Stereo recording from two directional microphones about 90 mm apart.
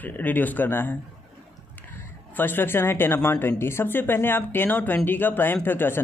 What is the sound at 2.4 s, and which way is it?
Speech, 25° left (ahead or behind).